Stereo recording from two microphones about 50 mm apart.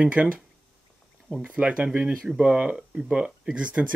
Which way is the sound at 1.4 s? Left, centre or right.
Right.